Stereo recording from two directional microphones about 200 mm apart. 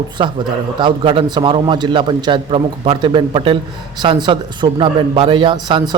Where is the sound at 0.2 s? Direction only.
25° right (ahead or behind).